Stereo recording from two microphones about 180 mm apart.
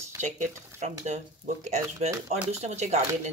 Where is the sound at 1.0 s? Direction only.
40° right (ahead or behind).